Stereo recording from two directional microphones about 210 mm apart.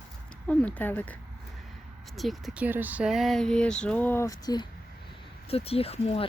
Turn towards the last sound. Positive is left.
turn(degrees=30)  # may be behind; listen again after turning